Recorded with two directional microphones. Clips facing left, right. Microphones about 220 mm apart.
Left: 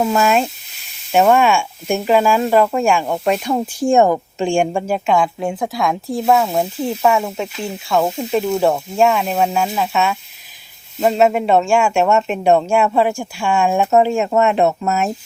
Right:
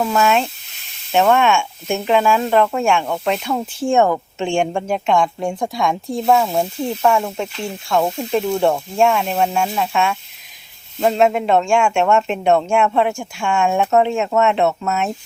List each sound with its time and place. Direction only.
0.0 s speech: 20° left (ahead or behind)
1.1 s speech: 10° left (ahead or behind)
3.5 s speech: 20° left (ahead or behind)